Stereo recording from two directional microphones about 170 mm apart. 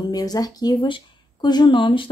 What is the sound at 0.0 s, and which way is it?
Speech, 20° left (ahead or behind).